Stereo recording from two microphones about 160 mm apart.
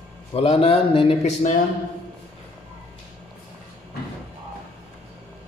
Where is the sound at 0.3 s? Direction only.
35° left (ahead or behind).